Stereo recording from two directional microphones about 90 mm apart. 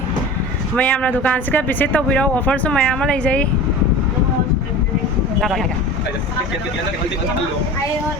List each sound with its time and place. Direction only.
0.8 s speech: 15° left (ahead or behind)
5.4 s speech: centre (ahead or behind)